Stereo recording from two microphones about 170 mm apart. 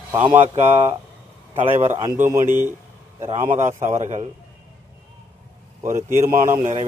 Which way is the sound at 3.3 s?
40° right (ahead or behind).